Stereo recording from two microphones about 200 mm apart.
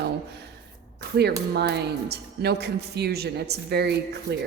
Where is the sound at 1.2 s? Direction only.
55° right (ahead or behind).